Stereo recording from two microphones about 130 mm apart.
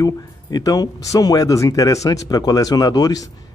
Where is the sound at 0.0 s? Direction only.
30° left (ahead or behind).